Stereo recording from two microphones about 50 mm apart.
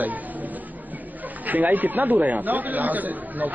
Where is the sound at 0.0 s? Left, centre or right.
Right.